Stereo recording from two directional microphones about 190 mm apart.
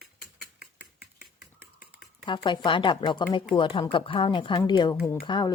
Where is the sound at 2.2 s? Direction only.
25° left (ahead or behind).